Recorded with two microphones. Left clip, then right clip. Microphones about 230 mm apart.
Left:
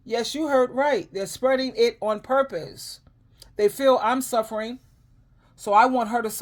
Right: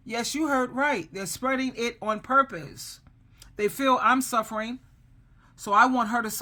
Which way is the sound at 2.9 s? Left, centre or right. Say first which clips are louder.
Left 3 dB; centre.